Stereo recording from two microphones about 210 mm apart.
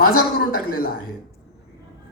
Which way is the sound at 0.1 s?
45° left (ahead or behind).